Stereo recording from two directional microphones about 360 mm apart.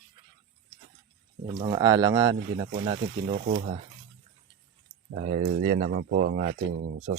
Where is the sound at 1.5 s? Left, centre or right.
Centre.